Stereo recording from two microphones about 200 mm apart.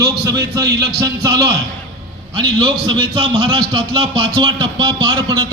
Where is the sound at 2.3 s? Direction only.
20° right (ahead or behind).